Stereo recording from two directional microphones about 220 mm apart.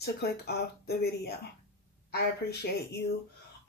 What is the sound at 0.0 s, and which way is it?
Speech, 45° left (ahead or behind).